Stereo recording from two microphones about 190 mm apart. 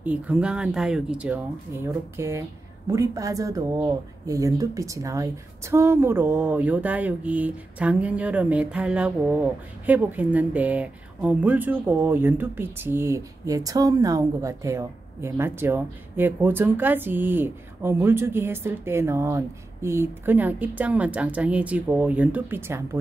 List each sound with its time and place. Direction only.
0.0 s a woman's voice: 5° right (ahead or behind)